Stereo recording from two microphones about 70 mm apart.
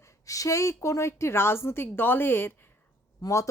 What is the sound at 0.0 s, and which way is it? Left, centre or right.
A woman's voice, left.